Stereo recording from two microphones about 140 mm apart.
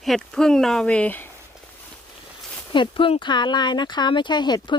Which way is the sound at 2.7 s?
35° left (ahead or behind).